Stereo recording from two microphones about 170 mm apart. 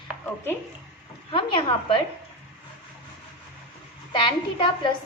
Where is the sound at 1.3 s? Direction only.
30° left (ahead or behind).